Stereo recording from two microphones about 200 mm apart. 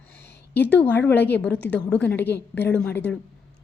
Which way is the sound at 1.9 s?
10° left (ahead or behind).